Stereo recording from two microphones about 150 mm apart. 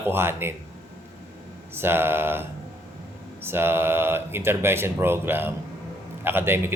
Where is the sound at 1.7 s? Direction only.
15° right (ahead or behind).